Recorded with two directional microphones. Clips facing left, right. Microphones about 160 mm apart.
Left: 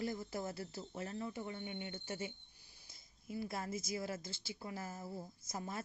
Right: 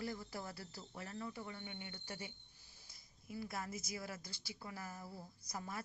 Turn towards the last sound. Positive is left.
turn(degrees=25)  # may be behind; listen again after turning